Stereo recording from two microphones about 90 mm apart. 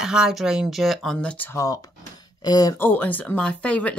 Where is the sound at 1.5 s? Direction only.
40° left (ahead or behind).